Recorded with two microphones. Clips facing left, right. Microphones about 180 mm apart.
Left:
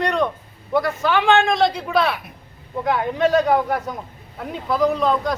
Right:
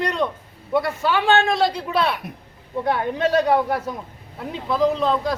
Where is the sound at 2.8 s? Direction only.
30° right (ahead or behind).